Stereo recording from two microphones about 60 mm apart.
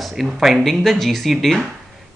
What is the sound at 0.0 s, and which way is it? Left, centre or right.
Speech, centre.